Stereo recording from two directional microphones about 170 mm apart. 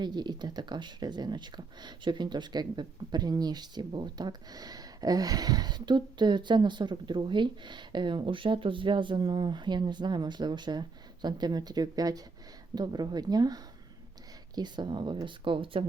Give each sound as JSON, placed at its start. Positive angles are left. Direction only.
{"t": 0.0, "sound": "speech", "side_deg": -25}